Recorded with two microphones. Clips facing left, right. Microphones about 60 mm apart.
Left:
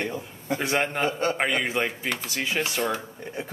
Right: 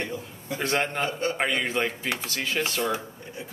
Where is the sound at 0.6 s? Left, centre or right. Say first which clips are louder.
Even; centre.